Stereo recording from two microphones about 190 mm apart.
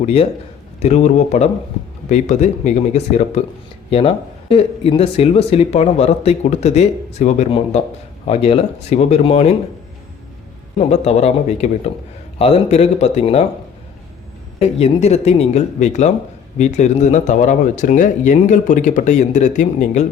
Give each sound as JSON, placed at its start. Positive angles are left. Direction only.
{"t": 0.0, "sound": "speech", "side_deg": 30}
{"t": 10.8, "sound": "speech", "side_deg": 35}
{"t": 14.6, "sound": "speech", "side_deg": 35}